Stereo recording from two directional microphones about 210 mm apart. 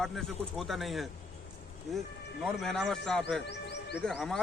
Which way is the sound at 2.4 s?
Centre (ahead or behind).